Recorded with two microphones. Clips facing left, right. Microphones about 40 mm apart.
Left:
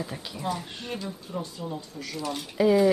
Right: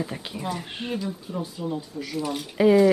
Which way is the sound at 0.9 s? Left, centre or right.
Centre.